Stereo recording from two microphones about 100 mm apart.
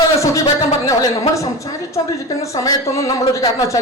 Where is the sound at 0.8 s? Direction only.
35° left (ahead or behind).